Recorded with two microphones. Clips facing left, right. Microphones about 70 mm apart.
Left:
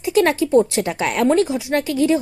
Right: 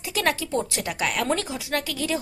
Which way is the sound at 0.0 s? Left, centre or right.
Left.